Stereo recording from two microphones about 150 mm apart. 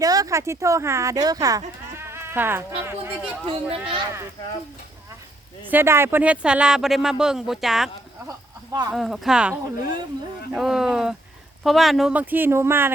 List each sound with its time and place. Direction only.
0.0 s speech: 25° right (ahead or behind)
3.4 s speech: 40° right (ahead or behind)
5.6 s speech: 15° right (ahead or behind)
8.3 s a sound: 25° right (ahead or behind)
8.9 s speech: centre (ahead or behind)